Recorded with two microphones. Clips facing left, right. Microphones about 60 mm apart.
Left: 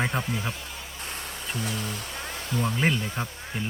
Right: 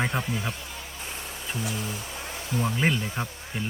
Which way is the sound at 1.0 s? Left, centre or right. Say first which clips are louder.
Left 2 dB; left.